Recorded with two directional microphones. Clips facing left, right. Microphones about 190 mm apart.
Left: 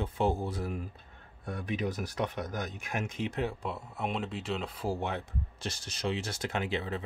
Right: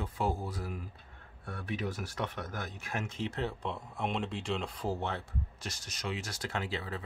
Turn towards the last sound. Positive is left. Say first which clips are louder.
# left 4 dB
turn(degrees=20)  # may be behind; listen again after turning